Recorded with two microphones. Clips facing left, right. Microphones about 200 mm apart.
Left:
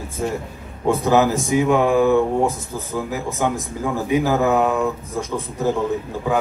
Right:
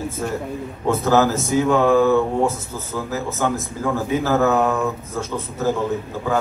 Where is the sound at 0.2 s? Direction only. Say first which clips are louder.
Left 3 dB; 20° left (ahead or behind).